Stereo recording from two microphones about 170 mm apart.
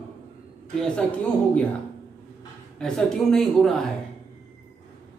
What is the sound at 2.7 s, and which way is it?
A man's voice, 5° left (ahead or behind).